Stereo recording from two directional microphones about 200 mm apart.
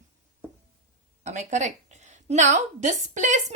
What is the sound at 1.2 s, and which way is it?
A woman's voice, 35° right (ahead or behind).